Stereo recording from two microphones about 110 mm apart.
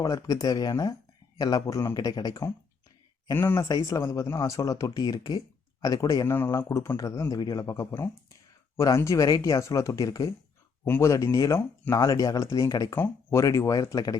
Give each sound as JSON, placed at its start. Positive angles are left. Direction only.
{"t": 0.0, "sound": "speech", "side_deg": 35}
{"t": 3.3, "sound": "speech", "side_deg": 20}
{"t": 6.2, "sound": "speech", "side_deg": 20}
{"t": 10.8, "sound": "speech", "side_deg": 20}